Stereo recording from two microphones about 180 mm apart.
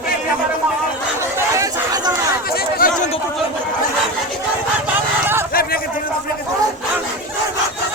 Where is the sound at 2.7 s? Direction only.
50° left (ahead or behind).